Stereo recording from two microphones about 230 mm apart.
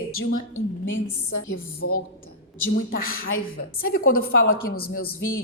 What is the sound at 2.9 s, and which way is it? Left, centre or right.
Speech, left.